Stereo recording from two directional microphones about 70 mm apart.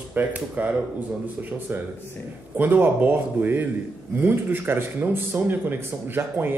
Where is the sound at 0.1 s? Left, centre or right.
Right.